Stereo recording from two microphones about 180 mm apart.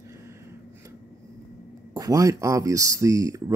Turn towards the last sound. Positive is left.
turn(degrees=-20)  # may be behind; listen again after turning